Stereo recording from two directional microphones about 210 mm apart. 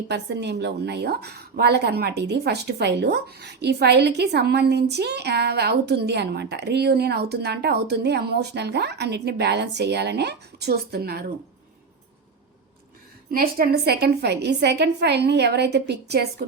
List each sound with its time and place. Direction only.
0.1 s a woman's voice: 55° right (ahead or behind)
13.3 s a woman's voice: 45° right (ahead or behind)